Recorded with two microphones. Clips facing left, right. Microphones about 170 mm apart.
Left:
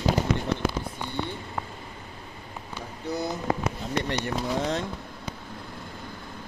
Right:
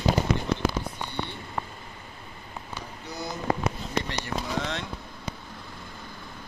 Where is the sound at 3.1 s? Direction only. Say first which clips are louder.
Left 7 dB; 55° left (ahead or behind).